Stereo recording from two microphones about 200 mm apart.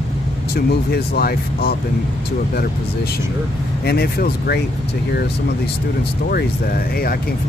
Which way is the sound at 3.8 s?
50° left (ahead or behind).